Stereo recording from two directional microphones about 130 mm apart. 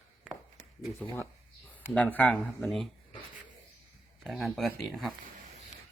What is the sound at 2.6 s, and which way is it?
Speech, centre (ahead or behind).